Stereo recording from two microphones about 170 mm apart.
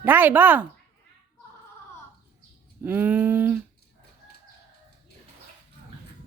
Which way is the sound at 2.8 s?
10° right (ahead or behind).